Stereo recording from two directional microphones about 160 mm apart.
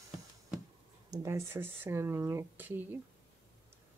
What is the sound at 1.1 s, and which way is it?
Speech, 15° right (ahead or behind).